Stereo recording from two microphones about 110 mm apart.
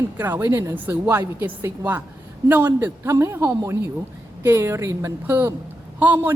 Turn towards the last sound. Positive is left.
turn(degrees=-15)  # may be behind; listen again after turning